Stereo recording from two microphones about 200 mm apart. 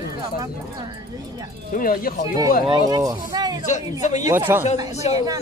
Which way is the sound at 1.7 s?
45° left (ahead or behind).